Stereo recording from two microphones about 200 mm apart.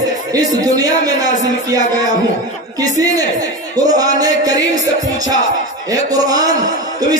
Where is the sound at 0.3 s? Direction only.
20° right (ahead or behind).